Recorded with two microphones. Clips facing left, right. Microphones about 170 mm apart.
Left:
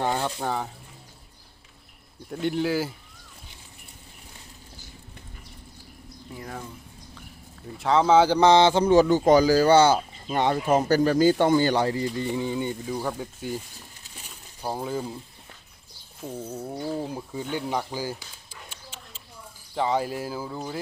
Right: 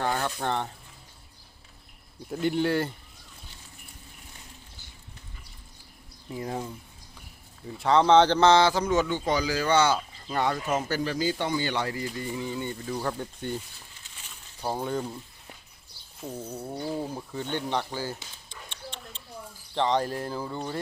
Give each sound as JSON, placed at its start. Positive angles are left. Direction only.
{"t": 0.0, "sound": "a sound", "side_deg": 15}
{"t": 0.3, "sound": "bird", "side_deg": 5}
{"t": 2.3, "sound": "bird", "side_deg": 0}
{"t": 6.3, "sound": "speech", "side_deg": -20}
{"t": 7.8, "sound": "speech", "side_deg": 0}
{"t": 10.7, "sound": "speech", "side_deg": 40}
{"t": 13.0, "sound": "bird", "side_deg": 5}
{"t": 14.6, "sound": "bird", "side_deg": 5}
{"t": 16.2, "sound": "bird", "side_deg": 5}
{"t": 17.1, "sound": "speech", "side_deg": 10}
{"t": 18.7, "sound": "a sound", "side_deg": 5}
{"t": 19.7, "sound": "speech", "side_deg": 5}